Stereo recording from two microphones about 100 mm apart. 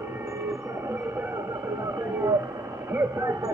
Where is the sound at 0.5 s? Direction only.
25° right (ahead or behind).